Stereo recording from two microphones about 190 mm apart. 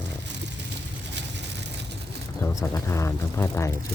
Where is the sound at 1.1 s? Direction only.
65° right (ahead or behind).